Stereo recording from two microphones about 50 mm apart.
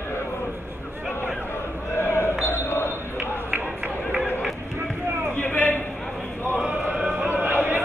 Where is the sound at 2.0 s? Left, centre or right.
Left.